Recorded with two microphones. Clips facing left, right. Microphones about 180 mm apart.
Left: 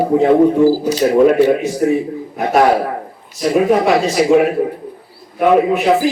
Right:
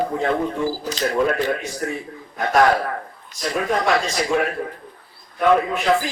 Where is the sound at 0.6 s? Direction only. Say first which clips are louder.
Left 12 dB; 40° left (ahead or behind).